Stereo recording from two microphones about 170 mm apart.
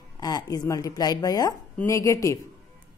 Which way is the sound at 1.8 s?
15° left (ahead or behind).